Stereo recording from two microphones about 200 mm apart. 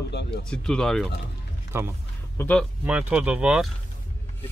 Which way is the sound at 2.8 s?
5° right (ahead or behind).